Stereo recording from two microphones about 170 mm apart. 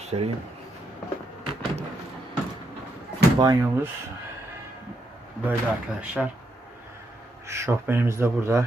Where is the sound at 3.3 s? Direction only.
20° right (ahead or behind).